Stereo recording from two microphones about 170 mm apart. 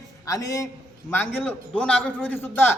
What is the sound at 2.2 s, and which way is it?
Speech, 10° left (ahead or behind).